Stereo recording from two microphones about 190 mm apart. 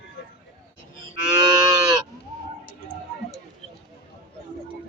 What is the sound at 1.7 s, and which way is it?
Livestock, 20° right (ahead or behind).